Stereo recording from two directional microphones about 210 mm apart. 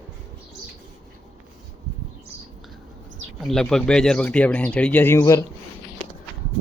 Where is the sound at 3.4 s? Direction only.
Centre (ahead or behind).